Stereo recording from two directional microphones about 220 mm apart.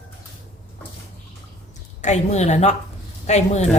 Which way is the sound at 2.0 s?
30° left (ahead or behind).